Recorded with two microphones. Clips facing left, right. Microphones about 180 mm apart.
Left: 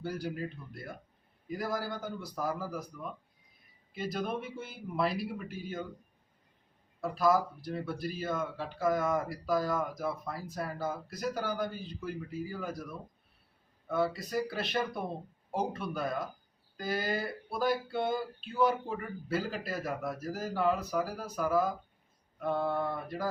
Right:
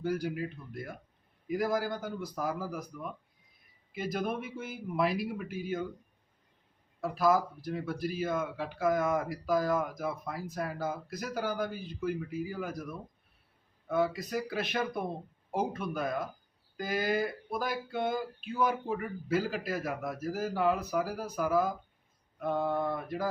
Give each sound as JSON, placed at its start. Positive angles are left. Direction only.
{"t": 0.0, "sound": "a man's voice", "side_deg": -10}
{"t": 7.0, "sound": "a man's voice", "side_deg": -10}